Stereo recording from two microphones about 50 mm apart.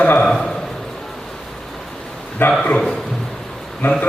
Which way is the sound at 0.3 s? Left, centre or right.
Centre.